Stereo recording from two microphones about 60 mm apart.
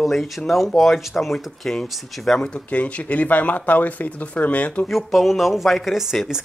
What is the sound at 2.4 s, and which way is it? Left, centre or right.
Speech, left.